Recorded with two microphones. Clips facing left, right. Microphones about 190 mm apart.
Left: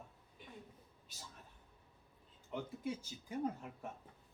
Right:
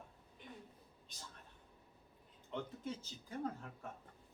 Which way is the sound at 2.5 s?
10° left (ahead or behind).